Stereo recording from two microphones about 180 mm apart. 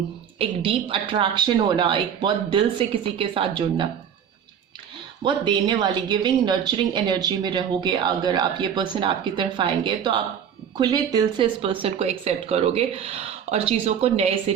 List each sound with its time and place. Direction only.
0.3 s speech: 30° right (ahead or behind)
5.2 s speech: 25° right (ahead or behind)